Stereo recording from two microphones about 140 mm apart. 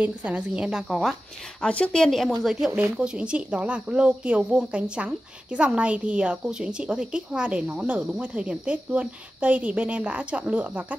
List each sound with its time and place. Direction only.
0.0 s speech: 10° right (ahead or behind)
2.7 s speech: 10° right (ahead or behind)